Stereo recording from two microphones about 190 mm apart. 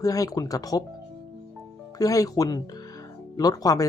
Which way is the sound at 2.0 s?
20° left (ahead or behind).